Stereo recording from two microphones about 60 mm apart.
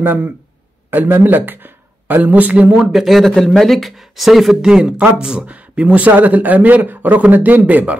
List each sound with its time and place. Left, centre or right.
0.0 s speech: right
2.9 s speech: centre
4.6 s speech: centre